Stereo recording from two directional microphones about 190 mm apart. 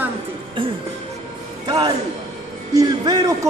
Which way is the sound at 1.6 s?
25° right (ahead or behind).